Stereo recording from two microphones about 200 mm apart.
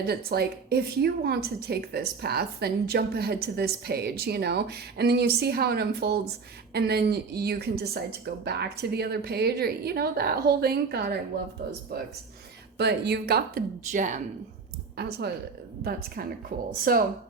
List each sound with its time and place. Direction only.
0.1 s a woman's voice: 50° right (ahead or behind)
12.7 s a woman's voice: 55° right (ahead or behind); by 14.2 s 40° right (ahead or behind)
14.9 s a woman's voice: 55° right (ahead or behind)